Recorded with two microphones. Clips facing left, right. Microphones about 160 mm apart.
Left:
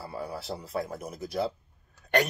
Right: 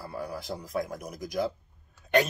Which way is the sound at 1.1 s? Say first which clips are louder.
Even; 15° right (ahead or behind).